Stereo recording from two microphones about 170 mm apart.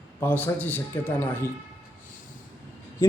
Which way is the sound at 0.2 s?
10° left (ahead or behind).